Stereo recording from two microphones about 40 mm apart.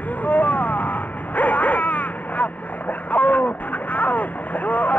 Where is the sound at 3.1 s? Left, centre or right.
Left.